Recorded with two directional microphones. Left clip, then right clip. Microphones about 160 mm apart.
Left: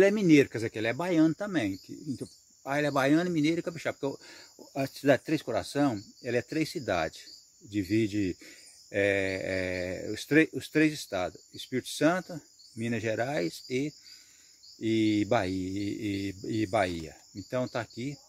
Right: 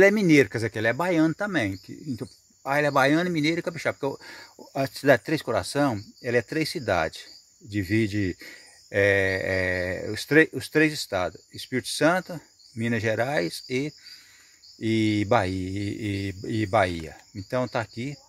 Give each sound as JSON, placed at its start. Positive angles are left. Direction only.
{"t": 0.0, "sound": "speech", "side_deg": -25}